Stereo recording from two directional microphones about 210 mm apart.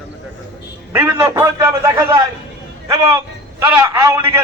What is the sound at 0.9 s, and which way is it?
A man's voice, 10° right (ahead or behind).